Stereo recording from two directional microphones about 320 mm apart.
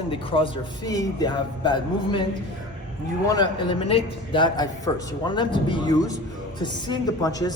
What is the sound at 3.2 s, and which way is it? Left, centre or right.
Speech, centre.